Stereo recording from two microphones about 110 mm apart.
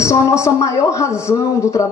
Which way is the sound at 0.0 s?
25° left (ahead or behind).